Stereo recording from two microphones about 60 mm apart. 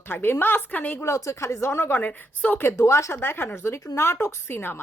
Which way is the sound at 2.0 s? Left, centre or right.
Left.